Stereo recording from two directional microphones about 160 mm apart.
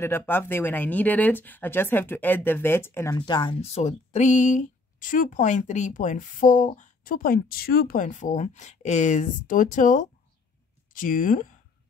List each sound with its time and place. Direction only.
0.0 s speech: 15° left (ahead or behind)
3.3 s speech: 30° left (ahead or behind); by 11.5 s 55° left (ahead or behind)